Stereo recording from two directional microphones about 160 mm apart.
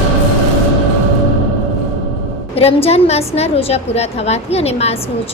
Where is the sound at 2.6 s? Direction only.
40° left (ahead or behind).